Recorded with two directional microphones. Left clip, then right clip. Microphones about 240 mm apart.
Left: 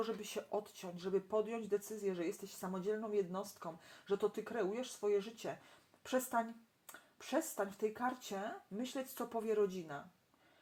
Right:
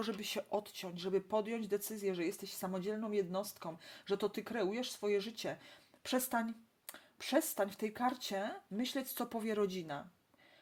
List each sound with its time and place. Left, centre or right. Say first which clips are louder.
0.0 s speech: right 1 dB; right